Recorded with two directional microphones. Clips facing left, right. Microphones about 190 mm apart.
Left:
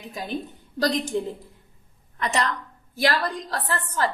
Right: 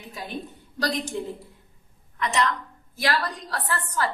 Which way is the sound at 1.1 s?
30° left (ahead or behind).